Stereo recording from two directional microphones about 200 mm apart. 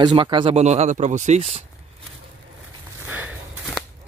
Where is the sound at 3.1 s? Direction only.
10° right (ahead or behind).